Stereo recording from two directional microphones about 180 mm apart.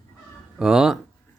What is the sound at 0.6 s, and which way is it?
Speech, 5° right (ahead or behind).